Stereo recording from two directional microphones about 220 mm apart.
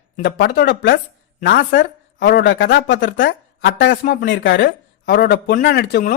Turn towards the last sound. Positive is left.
turn(degrees=45)  # may be behind; listen again after turning